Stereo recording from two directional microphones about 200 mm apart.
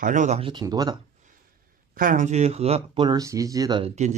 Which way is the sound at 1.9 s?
40° right (ahead or behind).